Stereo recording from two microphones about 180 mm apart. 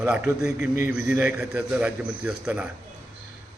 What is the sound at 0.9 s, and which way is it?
A man's voice, 15° right (ahead or behind).